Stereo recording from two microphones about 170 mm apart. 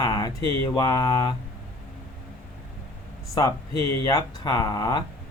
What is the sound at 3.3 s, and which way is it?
Speech, 20° left (ahead or behind).